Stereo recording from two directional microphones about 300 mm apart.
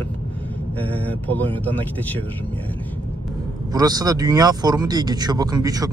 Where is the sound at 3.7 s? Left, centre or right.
Centre.